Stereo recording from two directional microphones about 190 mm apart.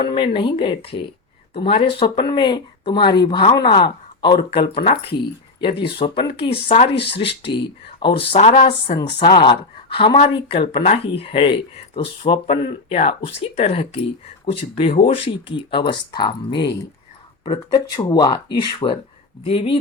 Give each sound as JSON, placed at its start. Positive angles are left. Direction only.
{"t": 0.0, "sound": "speech", "side_deg": 25}
{"t": 6.0, "sound": "speech", "side_deg": 25}